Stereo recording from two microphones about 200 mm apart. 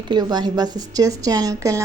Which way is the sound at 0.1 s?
20° right (ahead or behind).